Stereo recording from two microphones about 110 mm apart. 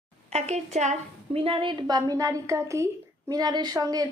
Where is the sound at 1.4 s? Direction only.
55° right (ahead or behind).